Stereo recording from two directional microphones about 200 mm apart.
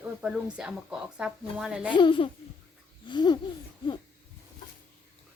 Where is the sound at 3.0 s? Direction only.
20° left (ahead or behind).